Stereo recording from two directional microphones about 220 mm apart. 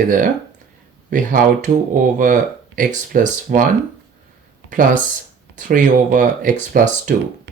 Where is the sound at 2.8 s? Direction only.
35° right (ahead or behind).